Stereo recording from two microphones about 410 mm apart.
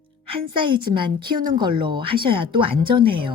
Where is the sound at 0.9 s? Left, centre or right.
Centre.